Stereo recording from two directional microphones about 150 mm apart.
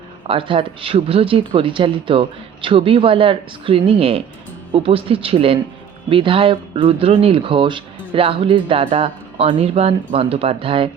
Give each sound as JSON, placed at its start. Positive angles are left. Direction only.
{"t": 0.3, "sound": "speech", "side_deg": -35}